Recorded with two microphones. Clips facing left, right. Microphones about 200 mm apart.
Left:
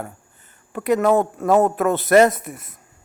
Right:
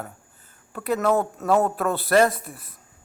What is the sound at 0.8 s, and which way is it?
Speech, 15° left (ahead or behind).